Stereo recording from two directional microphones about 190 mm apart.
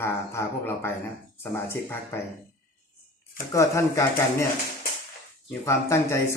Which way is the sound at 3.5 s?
15° left (ahead or behind).